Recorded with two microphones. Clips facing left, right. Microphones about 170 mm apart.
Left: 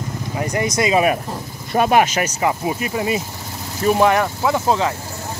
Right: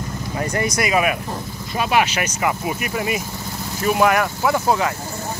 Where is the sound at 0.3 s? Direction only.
15° left (ahead or behind).